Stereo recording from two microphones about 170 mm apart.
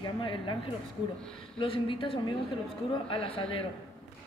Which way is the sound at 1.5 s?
30° left (ahead or behind).